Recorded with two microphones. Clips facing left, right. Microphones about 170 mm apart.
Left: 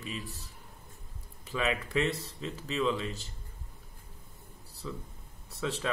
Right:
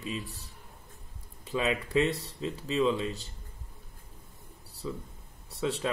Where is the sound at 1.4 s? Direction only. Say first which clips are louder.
Right 2 dB; 35° right (ahead or behind).